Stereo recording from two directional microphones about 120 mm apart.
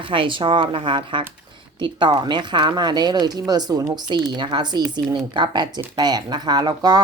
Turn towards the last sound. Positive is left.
turn(degrees=-35)  # may be behind; listen again after turning